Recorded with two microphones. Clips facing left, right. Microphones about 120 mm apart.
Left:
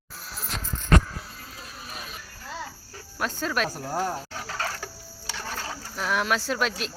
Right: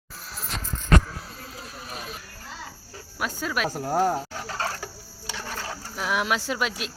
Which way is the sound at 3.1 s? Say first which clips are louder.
Left 1 dB; 5° right (ahead or behind).